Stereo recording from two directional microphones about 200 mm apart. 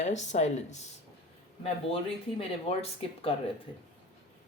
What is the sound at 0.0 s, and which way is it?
Speech, 35° left (ahead or behind).